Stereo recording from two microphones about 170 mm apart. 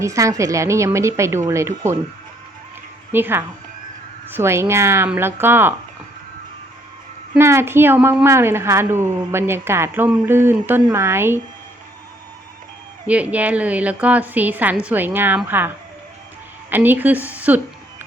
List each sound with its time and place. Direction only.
0.0 s a woman's voice: 20° right (ahead or behind)
3.1 s a woman's voice: 10° right (ahead or behind)
7.3 s a woman's voice: 15° right (ahead or behind)
13.1 s a woman's voice: 10° right (ahead or behind)